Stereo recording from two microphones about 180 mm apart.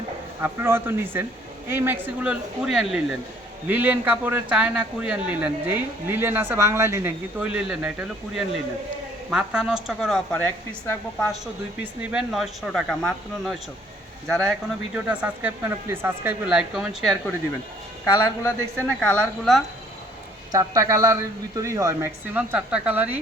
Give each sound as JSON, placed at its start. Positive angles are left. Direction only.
{"t": 0.4, "sound": "a man's voice", "side_deg": -15}
{"t": 9.3, "sound": "a woman's voice", "side_deg": -5}
{"t": 18.0, "sound": "speech", "side_deg": 20}
{"t": 18.9, "sound": "a woman's voice", "side_deg": 5}
{"t": 20.5, "sound": "a man's voice", "side_deg": -15}